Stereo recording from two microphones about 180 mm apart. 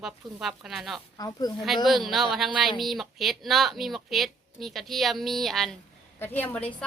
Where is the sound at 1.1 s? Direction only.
20° left (ahead or behind).